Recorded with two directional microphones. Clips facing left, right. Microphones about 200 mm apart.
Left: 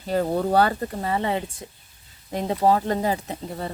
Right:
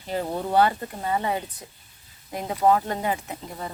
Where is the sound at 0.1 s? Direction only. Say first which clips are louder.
Left 4 dB; 40° left (ahead or behind).